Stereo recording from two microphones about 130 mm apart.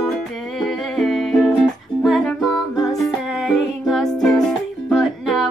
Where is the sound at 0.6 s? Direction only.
Centre (ahead or behind).